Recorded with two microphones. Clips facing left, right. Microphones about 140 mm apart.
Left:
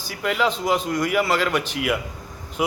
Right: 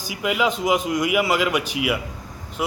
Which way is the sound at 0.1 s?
10° right (ahead or behind).